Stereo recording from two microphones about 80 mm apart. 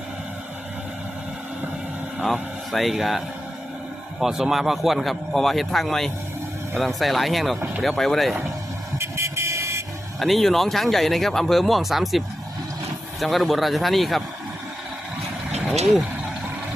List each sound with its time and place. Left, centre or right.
2.2 s speech: centre
9.0 s vehicle: right
10.2 s speech: centre